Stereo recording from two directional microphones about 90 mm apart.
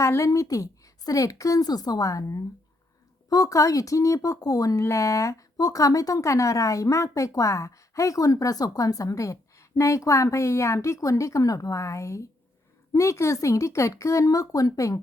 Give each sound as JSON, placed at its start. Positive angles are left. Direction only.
{"t": 0.0, "sound": "speech", "side_deg": 35}